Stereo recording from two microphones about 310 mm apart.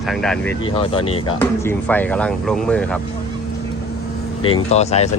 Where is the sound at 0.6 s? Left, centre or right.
Centre.